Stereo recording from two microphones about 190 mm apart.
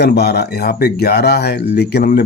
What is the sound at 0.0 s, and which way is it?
Speech, 60° left (ahead or behind).